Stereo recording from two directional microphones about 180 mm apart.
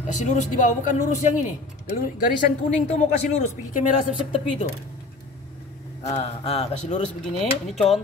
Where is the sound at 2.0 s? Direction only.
55° left (ahead or behind).